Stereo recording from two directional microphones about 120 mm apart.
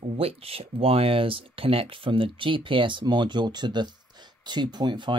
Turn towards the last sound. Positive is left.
turn(degrees=-40)  # may be behind; listen again after turning